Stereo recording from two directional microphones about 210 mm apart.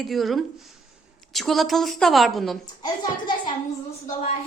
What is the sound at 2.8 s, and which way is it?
Speech, 20° left (ahead or behind).